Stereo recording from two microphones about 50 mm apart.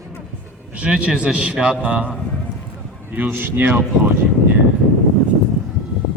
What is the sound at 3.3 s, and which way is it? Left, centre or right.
Speech, right.